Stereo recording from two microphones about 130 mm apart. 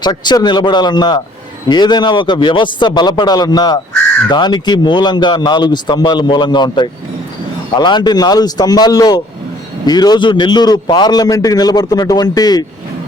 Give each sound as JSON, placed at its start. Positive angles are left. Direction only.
{"t": 0.0, "sound": "a man's voice", "side_deg": 30}